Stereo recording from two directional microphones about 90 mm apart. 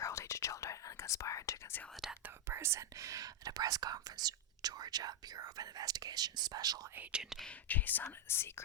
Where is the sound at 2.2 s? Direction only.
25° right (ahead or behind); by 6.9 s 45° right (ahead or behind).